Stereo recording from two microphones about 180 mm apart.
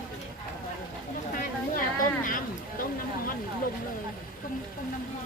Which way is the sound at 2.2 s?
50° left (ahead or behind).